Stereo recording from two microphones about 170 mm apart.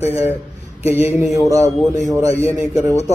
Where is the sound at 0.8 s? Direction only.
40° left (ahead or behind).